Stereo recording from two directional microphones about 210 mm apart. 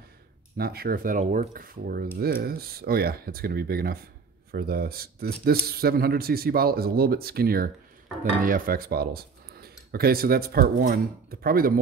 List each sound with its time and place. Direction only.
0.6 s speech: 45° right (ahead or behind)